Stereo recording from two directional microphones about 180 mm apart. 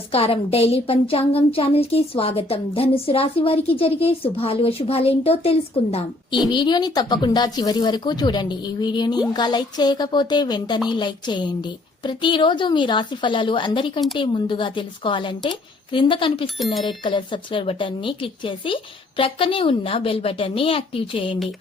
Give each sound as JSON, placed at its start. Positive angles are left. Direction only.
{"t": 0.1, "sound": "a woman's voice", "side_deg": 30}